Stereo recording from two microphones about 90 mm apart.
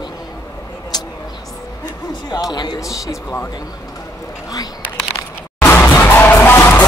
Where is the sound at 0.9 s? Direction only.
50° left (ahead or behind).